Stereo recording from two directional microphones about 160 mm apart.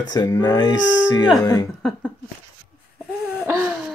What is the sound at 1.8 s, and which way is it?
Speech, 5° left (ahead or behind).